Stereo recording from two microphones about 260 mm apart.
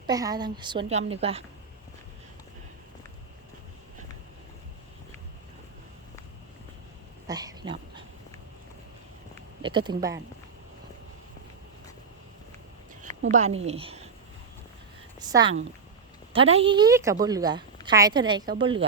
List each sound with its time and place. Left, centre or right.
0.1 s a woman's voice: centre
7.3 s dog: centre
9.3 s speech: centre
13.0 s speech: right
15.2 s a woman's voice: centre